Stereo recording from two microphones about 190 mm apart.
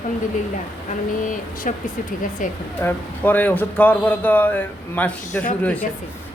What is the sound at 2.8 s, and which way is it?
Speech, 10° left (ahead or behind).